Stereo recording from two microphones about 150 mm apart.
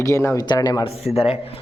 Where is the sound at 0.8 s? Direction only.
40° left (ahead or behind).